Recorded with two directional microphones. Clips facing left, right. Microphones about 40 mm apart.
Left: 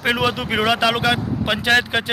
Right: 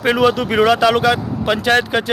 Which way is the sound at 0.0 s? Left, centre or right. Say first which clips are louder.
Right 5 dB; centre.